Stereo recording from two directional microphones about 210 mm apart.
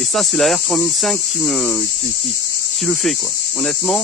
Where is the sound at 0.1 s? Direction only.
Centre (ahead or behind).